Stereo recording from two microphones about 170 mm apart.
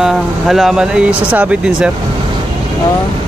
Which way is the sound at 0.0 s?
Centre (ahead or behind).